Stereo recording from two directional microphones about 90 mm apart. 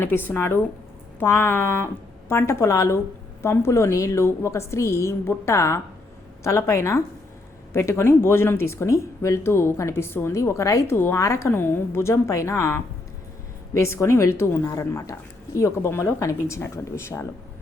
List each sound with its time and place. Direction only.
0.0 s a woman's voice: 25° left (ahead or behind)